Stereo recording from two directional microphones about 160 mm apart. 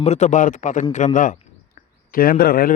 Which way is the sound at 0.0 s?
45° left (ahead or behind).